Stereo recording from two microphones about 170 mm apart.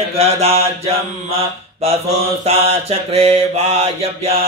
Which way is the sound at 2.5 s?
35° right (ahead or behind).